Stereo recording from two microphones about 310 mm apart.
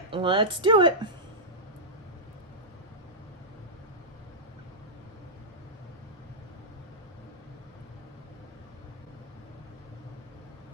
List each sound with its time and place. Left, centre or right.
0.1 s a woman's voice: centre